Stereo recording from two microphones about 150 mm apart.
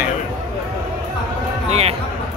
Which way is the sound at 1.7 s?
45° right (ahead or behind).